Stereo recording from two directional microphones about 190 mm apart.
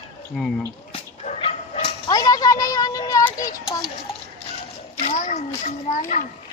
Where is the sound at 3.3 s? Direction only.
45° left (ahead or behind).